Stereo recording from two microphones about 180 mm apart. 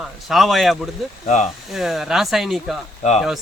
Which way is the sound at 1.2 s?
40° left (ahead or behind).